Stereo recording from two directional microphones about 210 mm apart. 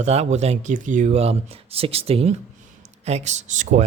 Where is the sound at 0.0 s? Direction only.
30° right (ahead or behind).